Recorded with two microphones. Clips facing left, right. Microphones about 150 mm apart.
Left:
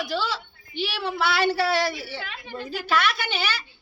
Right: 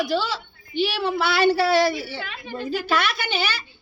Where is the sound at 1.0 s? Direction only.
20° right (ahead or behind).